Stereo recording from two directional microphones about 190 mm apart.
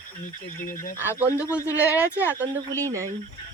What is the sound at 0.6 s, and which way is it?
Speech, 45° left (ahead or behind).